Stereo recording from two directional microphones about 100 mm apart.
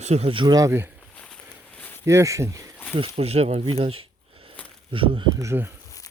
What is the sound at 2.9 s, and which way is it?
Speech, 70° right (ahead or behind).